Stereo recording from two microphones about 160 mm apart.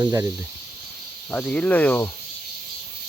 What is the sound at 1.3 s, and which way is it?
Speech, 5° left (ahead or behind).